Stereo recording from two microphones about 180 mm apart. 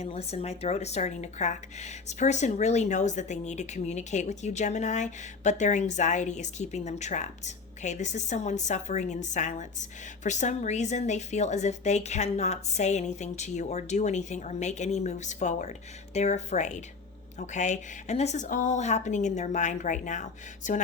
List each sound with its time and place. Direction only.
0.0 s speech: 35° left (ahead or behind)